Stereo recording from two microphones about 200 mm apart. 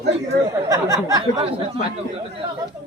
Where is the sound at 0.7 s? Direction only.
15° right (ahead or behind).